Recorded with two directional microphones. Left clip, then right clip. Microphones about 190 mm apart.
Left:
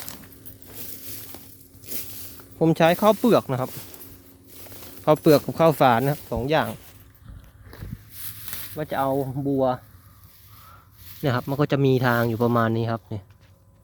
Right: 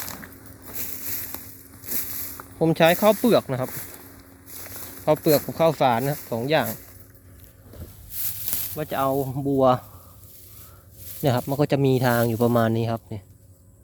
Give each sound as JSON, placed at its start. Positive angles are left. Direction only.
{"t": 1.8, "sound": "a sound", "side_deg": -20}
{"t": 2.6, "sound": "speech", "side_deg": 10}
{"t": 5.0, "sound": "speech", "side_deg": 20}
{"t": 8.7, "sound": "speech", "side_deg": -10}
{"t": 9.6, "sound": "speech", "side_deg": -30}
{"t": 11.2, "sound": "speech", "side_deg": -5}